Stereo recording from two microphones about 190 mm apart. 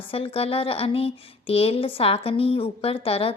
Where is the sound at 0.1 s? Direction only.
30° left (ahead or behind).